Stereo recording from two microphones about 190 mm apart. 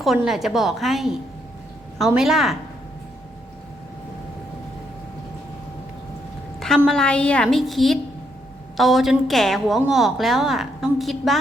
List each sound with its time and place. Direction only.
0.0 s a woman's voice: centre (ahead or behind)
6.8 s a woman's voice: 5° left (ahead or behind)